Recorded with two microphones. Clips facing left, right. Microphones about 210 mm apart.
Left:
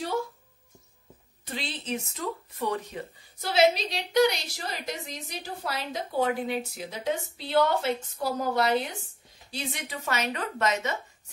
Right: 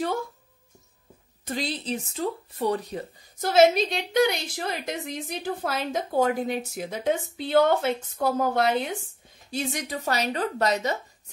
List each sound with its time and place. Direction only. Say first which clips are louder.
1.4 s a woman's voice: right 6 dB; 40° right (ahead or behind)